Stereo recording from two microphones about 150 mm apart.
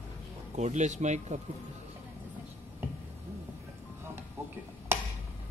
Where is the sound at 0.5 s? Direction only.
50° right (ahead or behind).